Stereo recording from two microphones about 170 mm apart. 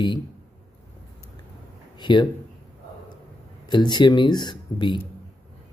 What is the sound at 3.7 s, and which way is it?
Speech, 25° left (ahead or behind).